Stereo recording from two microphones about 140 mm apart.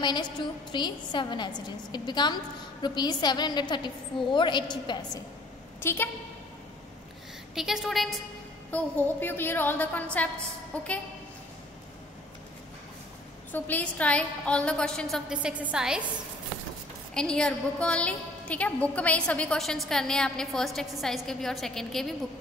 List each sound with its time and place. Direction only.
0.0 s a woman's voice: 30° left (ahead or behind)
5.8 s a woman's voice: 15° left (ahead or behind)
7.5 s a woman's voice: 5° right (ahead or behind)
13.5 s a woman's voice: 10° left (ahead or behind)
15.3 s a woman's voice: 10° right (ahead or behind)
17.1 s a woman's voice: 5° left (ahead or behind)